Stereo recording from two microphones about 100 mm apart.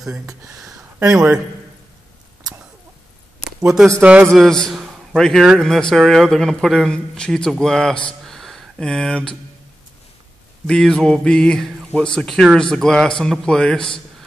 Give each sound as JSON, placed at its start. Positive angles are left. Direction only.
{"t": 3.4, "sound": "a sound", "side_deg": -5}
{"t": 4.0, "sound": "a man's voice", "side_deg": -15}
{"t": 4.3, "sound": "a man's voice", "side_deg": 5}
{"t": 10.7, "sound": "speech", "side_deg": 5}